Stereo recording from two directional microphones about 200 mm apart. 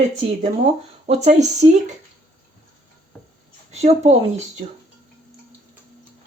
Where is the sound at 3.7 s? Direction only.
35° right (ahead or behind).